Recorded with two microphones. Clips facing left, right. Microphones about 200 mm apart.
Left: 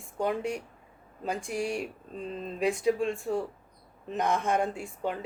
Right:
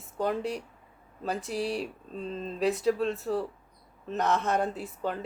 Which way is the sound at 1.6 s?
35° right (ahead or behind).